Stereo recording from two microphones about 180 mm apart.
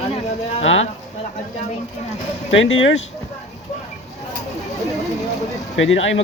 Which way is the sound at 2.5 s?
90° left.